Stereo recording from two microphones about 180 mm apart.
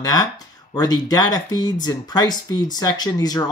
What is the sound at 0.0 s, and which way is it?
Speech, 20° left (ahead or behind).